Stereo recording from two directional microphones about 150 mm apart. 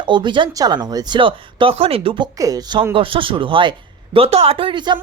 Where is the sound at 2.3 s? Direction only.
25° right (ahead or behind).